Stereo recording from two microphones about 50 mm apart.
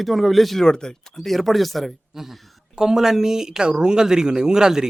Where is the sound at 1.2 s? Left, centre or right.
Centre.